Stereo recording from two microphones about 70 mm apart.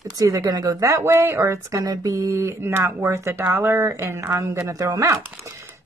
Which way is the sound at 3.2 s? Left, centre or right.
Right.